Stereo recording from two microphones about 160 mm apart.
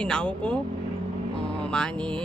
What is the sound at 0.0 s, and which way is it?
Speech, 5° left (ahead or behind).